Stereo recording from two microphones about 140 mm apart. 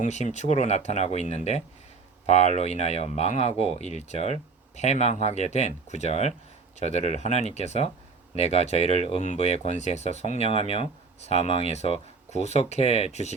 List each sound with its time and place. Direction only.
0.0 s speech: 55° left (ahead or behind)